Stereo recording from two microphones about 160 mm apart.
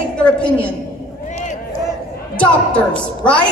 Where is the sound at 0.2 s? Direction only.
5° left (ahead or behind).